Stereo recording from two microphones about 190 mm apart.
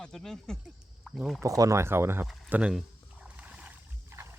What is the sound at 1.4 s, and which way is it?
Speech, 15° right (ahead or behind).